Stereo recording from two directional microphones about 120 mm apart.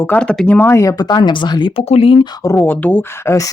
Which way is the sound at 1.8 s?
55° left (ahead or behind).